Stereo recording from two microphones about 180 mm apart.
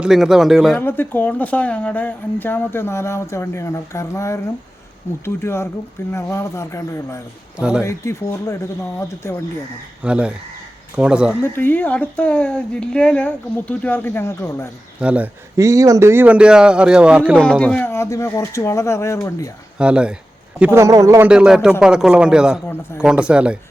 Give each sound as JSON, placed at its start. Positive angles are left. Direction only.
{"t": 0.0, "sound": "a man's voice", "side_deg": 0}
{"t": 0.8, "sound": "speech", "side_deg": 10}
{"t": 10.0, "sound": "a man's voice", "side_deg": -5}
{"t": 11.4, "sound": "speech", "side_deg": 10}
{"t": 15.0, "sound": "speech", "side_deg": -10}
{"t": 19.8, "sound": "a man's voice", "side_deg": -5}
{"t": 21.2, "sound": "a man's voice", "side_deg": -5}